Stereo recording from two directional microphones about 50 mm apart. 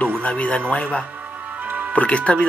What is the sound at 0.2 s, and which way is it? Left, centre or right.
Speech, left.